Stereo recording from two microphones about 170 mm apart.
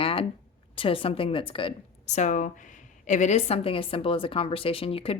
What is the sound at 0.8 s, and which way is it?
Speech, 30° left (ahead or behind).